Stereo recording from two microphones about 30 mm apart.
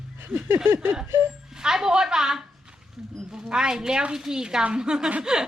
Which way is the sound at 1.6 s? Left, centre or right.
Centre.